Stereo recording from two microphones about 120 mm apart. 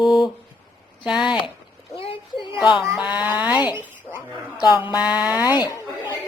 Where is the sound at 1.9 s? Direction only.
50° left (ahead or behind).